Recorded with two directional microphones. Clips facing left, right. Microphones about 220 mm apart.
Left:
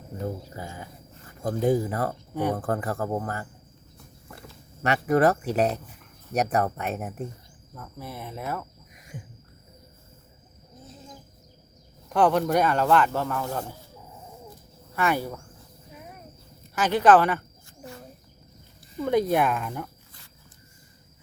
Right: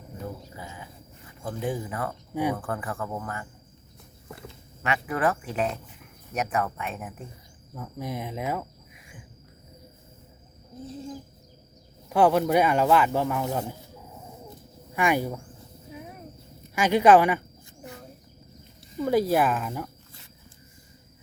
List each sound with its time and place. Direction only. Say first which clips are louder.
0.5 s speech: left 3 dB; 45° left (ahead or behind)
2.3 s speech: right 1 dB; 10° right (ahead or behind)
2.6 s speech: left 4 dB; 35° left (ahead or behind)
4.9 s speech: left 5 dB; 40° left (ahead or behind)
7.7 s cricket: right 5 dB; 10° right (ahead or behind)
12.0 s speech: right 1 dB; 10° right (ahead or behind)
14.9 s speech: right 1 dB; 15° right (ahead or behind)
16.7 s speech: right 1 dB; 10° right (ahead or behind)
18.9 s speech: even; 5° right (ahead or behind)